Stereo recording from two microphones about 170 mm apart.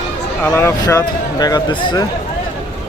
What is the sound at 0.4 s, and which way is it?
Speech, 15° left (ahead or behind).